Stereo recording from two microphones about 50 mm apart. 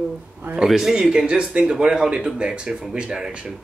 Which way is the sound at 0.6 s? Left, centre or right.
Centre.